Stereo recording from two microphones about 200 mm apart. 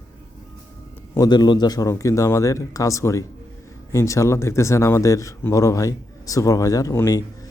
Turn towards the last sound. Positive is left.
turn(degrees=15)  # may be behind; listen again after turning